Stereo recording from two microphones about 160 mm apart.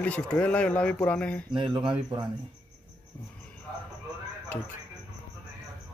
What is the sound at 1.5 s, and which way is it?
Speech, 35° right (ahead or behind).